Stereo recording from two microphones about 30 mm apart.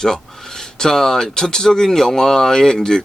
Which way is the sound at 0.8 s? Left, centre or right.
Centre.